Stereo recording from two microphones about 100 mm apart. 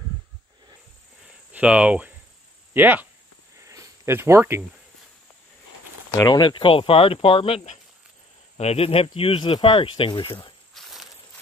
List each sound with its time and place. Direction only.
1.5 s speech: 15° right (ahead or behind)
3.5 s a sound: 30° right (ahead or behind)
6.2 s speech: 45° left (ahead or behind)
10.7 s walk: centre (ahead or behind)